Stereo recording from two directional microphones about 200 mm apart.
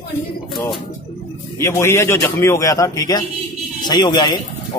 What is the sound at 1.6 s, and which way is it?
Speech, 15° left (ahead or behind).